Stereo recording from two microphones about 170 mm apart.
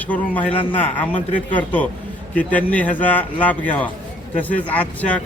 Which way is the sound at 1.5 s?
10° left (ahead or behind).